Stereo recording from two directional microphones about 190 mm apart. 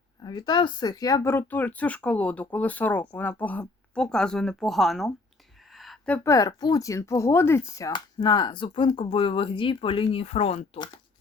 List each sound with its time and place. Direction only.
0.2 s a woman's voice: 20° left (ahead or behind); by 5.1 s centre (ahead or behind)
5.7 s a sound: centre (ahead or behind)
6.2 s speech: 20° left (ahead or behind)